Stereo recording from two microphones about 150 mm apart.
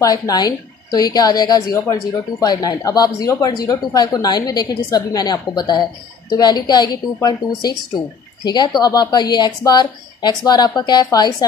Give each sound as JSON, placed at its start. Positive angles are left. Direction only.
{"t": 0.0, "sound": "speech", "side_deg": 25}